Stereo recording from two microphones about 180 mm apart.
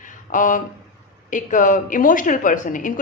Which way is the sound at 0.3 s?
45° left (ahead or behind).